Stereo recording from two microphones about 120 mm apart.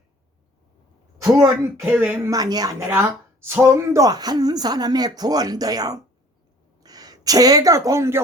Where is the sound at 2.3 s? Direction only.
30° right (ahead or behind).